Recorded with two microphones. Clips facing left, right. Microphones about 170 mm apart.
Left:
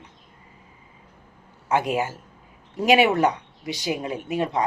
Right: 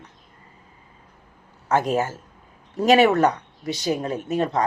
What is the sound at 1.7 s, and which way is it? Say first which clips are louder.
Speech: right 2 dB; 40° right (ahead or behind).